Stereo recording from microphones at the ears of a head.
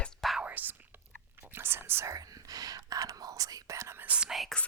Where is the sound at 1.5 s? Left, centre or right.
Right.